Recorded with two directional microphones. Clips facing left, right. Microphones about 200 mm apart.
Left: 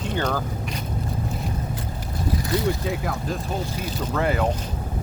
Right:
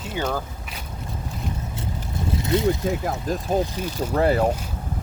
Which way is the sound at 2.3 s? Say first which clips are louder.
Right 3 dB; 25° right (ahead or behind).